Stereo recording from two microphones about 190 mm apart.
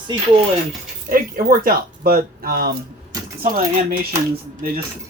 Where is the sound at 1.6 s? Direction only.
50° right (ahead or behind).